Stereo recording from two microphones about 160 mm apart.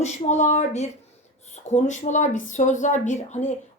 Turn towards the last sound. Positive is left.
turn(degrees=45)  # may be behind; listen again after turning